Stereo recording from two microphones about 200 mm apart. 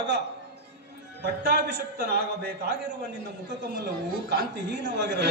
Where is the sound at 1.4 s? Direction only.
55° right (ahead or behind).